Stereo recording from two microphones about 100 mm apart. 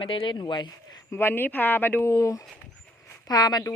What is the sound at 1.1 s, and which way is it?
Speech, 25° left (ahead or behind).